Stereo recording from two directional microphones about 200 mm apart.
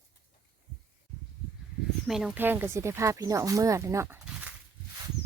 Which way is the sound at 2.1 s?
Centre (ahead or behind).